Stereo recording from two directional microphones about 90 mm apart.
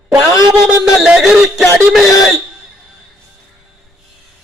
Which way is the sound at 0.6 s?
5° right (ahead or behind).